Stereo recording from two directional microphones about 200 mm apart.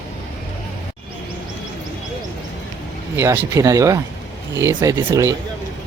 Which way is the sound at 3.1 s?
15° right (ahead or behind).